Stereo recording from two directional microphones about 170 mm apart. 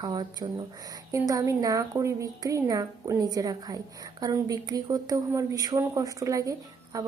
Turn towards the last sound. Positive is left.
turn(degrees=-20)  # may be behind; listen again after turning